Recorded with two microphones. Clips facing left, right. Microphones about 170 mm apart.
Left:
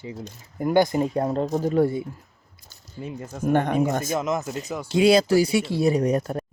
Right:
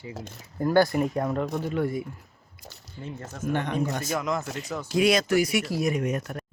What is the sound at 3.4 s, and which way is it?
Speech, 50° left (ahead or behind).